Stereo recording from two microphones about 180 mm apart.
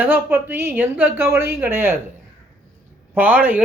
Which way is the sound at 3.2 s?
10° right (ahead or behind).